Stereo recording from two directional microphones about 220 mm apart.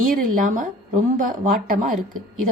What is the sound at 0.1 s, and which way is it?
Speech, 40° right (ahead or behind).